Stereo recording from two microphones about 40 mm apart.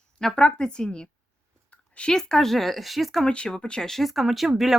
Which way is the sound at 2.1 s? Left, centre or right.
Centre.